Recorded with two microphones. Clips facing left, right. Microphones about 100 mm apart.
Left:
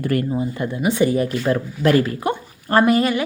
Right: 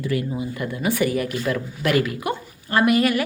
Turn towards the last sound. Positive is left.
turn(degrees=25)  # may be behind; listen again after turning